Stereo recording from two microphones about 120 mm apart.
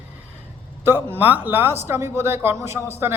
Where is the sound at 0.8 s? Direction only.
20° right (ahead or behind).